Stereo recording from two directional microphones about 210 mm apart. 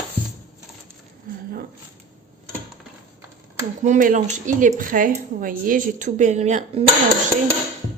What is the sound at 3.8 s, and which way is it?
Speech, 35° right (ahead or behind).